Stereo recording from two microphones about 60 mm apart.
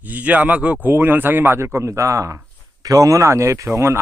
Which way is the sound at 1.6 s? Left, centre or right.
Right.